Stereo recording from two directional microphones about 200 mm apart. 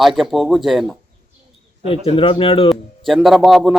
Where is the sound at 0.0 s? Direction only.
Centre (ahead or behind).